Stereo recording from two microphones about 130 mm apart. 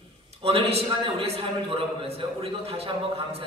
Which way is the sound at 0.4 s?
50° right (ahead or behind).